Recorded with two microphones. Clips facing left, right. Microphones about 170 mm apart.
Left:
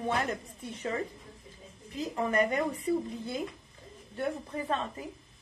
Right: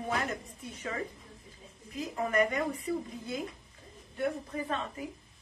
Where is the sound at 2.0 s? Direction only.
30° left (ahead or behind).